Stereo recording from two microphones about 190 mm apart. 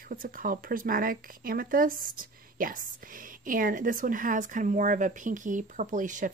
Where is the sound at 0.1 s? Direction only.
45° right (ahead or behind).